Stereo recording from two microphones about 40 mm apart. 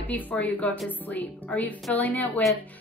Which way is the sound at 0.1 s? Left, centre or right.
Left.